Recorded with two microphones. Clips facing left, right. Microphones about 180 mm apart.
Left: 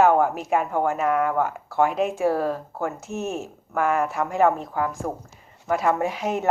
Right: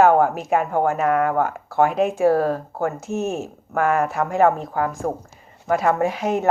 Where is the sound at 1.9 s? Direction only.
50° right (ahead or behind).